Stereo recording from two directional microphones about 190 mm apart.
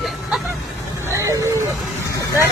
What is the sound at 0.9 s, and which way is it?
Speech, 15° right (ahead or behind).